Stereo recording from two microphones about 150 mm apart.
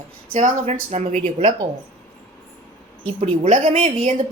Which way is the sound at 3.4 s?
45° right (ahead or behind).